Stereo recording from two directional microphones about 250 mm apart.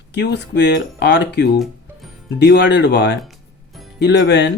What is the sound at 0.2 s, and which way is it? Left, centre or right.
Speech, left.